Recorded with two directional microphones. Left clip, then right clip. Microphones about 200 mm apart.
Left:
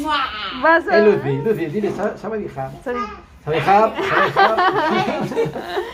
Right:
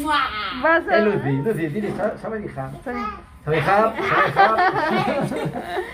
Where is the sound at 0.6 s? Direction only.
5° left (ahead or behind).